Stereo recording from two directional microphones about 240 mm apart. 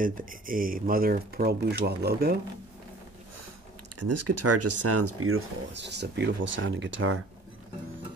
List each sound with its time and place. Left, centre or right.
0.0 s speech: right
4.0 s speech: right